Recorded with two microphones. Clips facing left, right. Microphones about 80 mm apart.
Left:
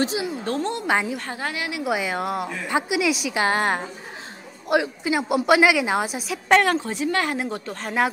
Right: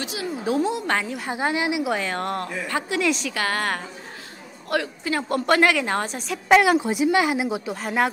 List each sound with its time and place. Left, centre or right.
0.3 s a woman's voice: centre
0.8 s a woman's voice: centre
1.3 s a woman's voice: right
1.9 s a woman's voice: centre
3.3 s a woman's voice: left; by 6.6 s centre
6.6 s a woman's voice: centre